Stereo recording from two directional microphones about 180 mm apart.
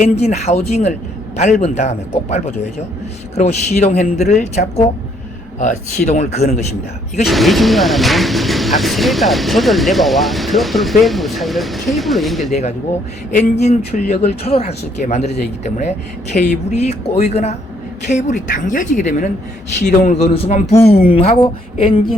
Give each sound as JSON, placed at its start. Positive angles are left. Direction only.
{"t": 0.0, "sound": "speech", "side_deg": 40}
{"t": 7.3, "sound": "speech", "side_deg": 0}
{"t": 12.5, "sound": "speech", "side_deg": 35}
{"t": 20.1, "sound": "speech", "side_deg": 35}